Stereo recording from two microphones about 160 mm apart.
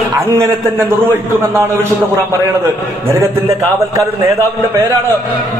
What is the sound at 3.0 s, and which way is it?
Speech, 20° right (ahead or behind).